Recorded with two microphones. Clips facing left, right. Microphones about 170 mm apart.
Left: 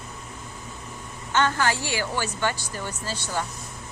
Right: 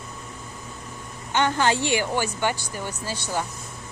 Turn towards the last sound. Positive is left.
turn(degrees=-15)  # may be behind; listen again after turning